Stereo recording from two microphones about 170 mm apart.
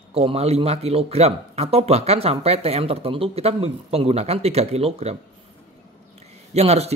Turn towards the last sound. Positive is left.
turn(degrees=-40)  # may be behind; listen again after turning